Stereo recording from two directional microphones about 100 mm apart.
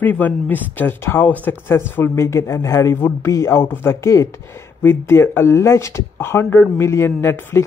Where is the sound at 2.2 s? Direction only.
30° left (ahead or behind).